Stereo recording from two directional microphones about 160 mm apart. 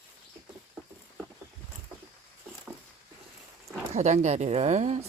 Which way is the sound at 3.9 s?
45° right (ahead or behind).